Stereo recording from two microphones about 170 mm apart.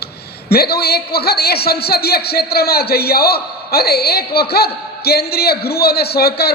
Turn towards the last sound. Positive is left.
turn(degrees=65)  # may be behind; listen again after turning